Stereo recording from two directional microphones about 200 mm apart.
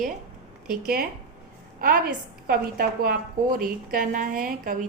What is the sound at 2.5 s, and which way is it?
A woman's voice, 50° right (ahead or behind).